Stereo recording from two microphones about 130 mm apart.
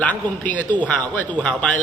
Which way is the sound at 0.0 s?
10° left (ahead or behind).